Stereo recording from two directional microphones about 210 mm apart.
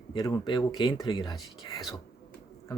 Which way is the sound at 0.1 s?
20° left (ahead or behind).